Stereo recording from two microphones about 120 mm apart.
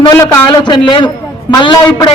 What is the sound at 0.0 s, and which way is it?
A man's voice, 40° left (ahead or behind).